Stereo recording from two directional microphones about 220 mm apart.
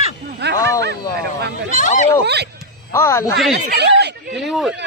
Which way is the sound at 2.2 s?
50° right (ahead or behind).